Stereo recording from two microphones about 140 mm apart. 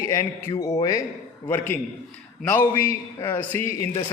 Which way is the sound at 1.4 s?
15° left (ahead or behind).